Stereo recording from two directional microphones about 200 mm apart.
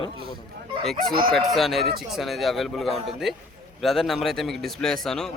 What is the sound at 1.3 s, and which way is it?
A man's voice, centre (ahead or behind).